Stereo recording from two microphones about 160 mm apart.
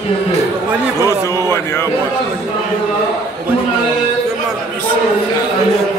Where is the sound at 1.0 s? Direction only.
20° left (ahead or behind).